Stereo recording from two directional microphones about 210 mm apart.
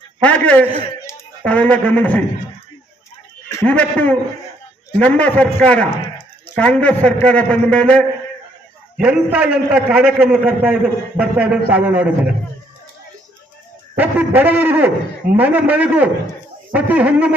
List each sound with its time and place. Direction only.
0.2 s a man's voice: 5° left (ahead or behind)
3.5 s a man's voice: 10° left (ahead or behind)
13.9 s a man's voice: 10° right (ahead or behind)